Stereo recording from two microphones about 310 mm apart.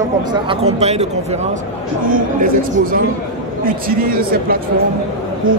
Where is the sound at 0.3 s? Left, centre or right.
Centre.